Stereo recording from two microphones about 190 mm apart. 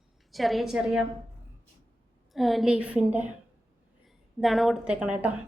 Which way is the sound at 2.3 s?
Centre (ahead or behind).